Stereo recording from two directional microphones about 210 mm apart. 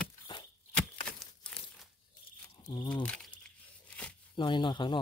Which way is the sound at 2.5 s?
20° left (ahead or behind).